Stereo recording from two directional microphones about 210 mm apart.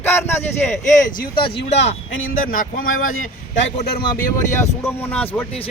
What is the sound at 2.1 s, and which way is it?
Speech, 70° left (ahead or behind).